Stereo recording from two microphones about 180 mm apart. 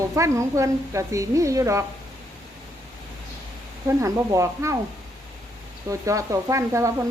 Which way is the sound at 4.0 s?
15° right (ahead or behind).